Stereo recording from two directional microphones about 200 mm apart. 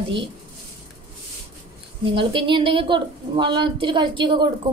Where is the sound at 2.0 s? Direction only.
25° right (ahead or behind).